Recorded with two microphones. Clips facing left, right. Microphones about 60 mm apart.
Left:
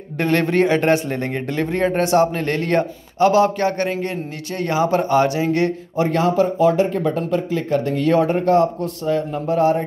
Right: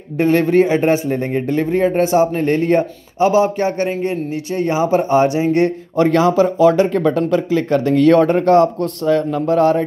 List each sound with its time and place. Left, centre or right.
0.2 s a man's voice: centre; by 5.7 s right
5.9 s speech: right
8.1 s speech: right